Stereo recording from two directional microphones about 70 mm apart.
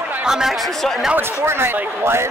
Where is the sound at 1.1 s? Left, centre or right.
Right.